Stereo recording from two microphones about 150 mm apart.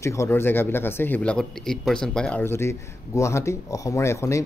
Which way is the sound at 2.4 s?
15° left (ahead or behind).